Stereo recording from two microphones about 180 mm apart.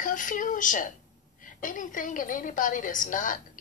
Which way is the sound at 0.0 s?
45° left (ahead or behind).